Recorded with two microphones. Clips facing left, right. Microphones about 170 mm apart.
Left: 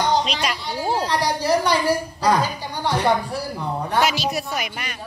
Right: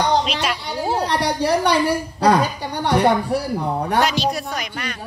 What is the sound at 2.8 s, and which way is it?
Speech, 65° right (ahead or behind).